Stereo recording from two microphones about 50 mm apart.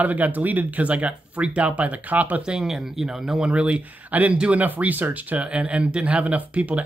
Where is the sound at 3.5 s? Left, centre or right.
Right.